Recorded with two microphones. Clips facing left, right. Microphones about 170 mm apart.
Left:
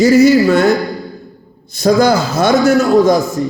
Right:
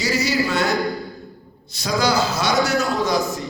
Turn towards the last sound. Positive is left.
turn(degrees=50)  # may be behind; listen again after turning